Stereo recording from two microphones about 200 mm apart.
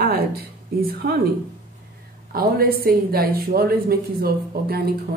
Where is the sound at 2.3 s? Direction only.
50° right (ahead or behind).